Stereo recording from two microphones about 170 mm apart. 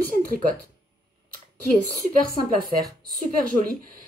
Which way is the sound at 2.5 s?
55° right (ahead or behind).